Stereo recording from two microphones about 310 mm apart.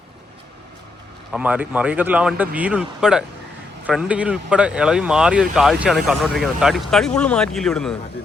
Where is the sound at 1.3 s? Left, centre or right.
Centre.